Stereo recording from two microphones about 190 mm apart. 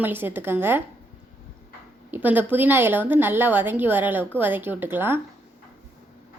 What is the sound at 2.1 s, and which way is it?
A woman's voice, 10° right (ahead or behind).